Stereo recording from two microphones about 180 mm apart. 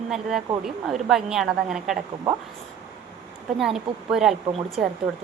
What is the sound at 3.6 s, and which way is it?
Speech, centre (ahead or behind).